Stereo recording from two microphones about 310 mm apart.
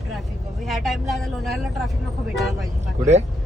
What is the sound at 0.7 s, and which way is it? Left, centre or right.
A woman's voice, centre.